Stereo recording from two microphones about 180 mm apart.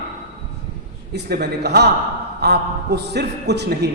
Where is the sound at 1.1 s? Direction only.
65° right (ahead or behind).